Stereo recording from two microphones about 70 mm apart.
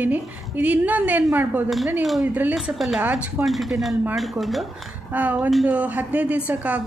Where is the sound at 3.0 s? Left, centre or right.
Centre.